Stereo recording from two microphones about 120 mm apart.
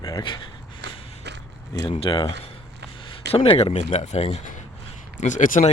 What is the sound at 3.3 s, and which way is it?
Speech, 50° left (ahead or behind).